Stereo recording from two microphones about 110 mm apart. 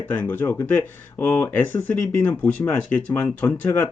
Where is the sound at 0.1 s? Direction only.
20° left (ahead or behind).